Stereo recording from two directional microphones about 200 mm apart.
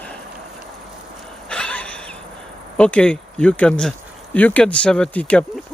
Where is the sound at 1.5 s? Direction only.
5° left (ahead or behind).